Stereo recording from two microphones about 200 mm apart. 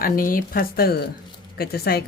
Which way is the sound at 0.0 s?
45° left (ahead or behind).